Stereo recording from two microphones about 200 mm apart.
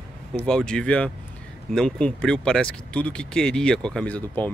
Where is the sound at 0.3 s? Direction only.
5° left (ahead or behind).